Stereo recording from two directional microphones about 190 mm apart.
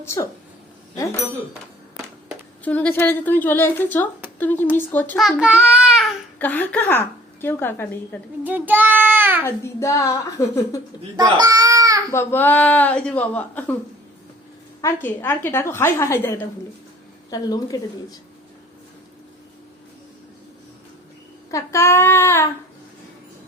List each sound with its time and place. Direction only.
0.0 s a woman's voice: 15° left (ahead or behind)
2.6 s a woman's voice: 10° left (ahead or behind)
5.2 s child singing: 5° right (ahead or behind)
6.4 s a woman's voice: 10° left (ahead or behind)
8.4 s child singing: 10° right (ahead or behind)
9.8 s a woman's voice: 15° left (ahead or behind)
11.2 s baby cry: 20° right (ahead or behind)
12.1 s a woman's voice: 10° left (ahead or behind)
14.8 s a woman's voice: 15° left (ahead or behind)
21.5 s speech: 15° left (ahead or behind)